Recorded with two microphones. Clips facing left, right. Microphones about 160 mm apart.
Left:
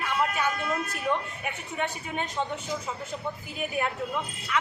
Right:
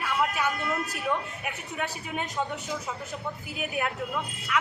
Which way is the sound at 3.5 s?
5° right (ahead or behind).